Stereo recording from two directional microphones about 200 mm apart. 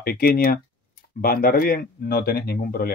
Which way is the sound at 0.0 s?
50° left (ahead or behind).